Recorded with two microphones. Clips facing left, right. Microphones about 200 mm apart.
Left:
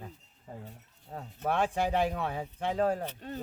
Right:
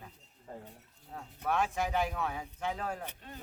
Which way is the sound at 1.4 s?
30° left (ahead or behind).